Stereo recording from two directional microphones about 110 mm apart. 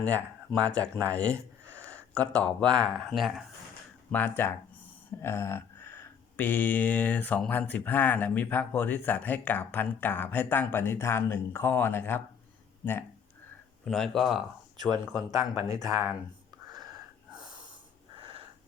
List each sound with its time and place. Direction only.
0.6 s speech: 10° left (ahead or behind)
4.1 s a sound: 15° left (ahead or behind)
12.8 s speech: 15° left (ahead or behind)
13.8 s speech: 5° left (ahead or behind)
15.3 s speech: 30° right (ahead or behind)
18.2 s a sound: 55° right (ahead or behind)